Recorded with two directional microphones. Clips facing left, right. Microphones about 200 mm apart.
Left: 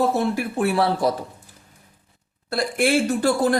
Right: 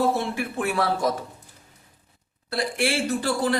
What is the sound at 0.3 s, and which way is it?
Speech, 35° left (ahead or behind).